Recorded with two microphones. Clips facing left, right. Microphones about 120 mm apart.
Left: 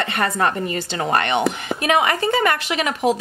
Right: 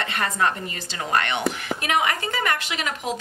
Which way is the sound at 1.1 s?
25° left (ahead or behind).